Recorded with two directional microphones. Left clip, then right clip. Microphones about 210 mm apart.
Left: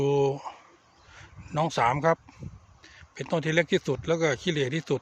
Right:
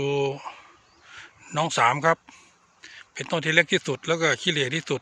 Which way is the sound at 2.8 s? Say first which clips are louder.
Right 4 dB; 5° left (ahead or behind).